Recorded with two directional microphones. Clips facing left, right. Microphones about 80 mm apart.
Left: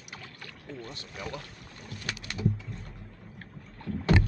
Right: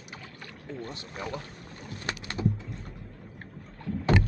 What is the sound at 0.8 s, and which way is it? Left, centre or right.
Speech, right.